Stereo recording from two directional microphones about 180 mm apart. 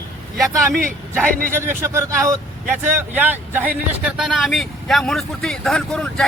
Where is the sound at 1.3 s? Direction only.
50° right (ahead or behind).